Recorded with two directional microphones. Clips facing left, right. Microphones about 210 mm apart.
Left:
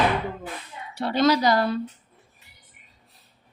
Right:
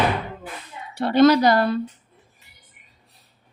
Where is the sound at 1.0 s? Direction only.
55° right (ahead or behind).